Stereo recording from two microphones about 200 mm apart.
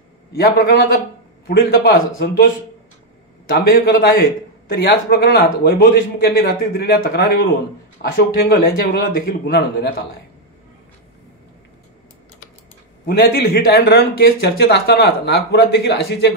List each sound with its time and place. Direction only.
0.4 s a man's voice: 50° left (ahead or behind)
13.0 s speech: 50° left (ahead or behind)